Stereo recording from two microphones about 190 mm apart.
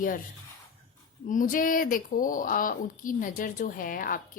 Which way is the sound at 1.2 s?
45° left (ahead or behind).